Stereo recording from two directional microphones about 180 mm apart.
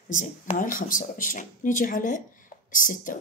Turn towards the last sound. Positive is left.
turn(degrees=45)  # may be behind; listen again after turning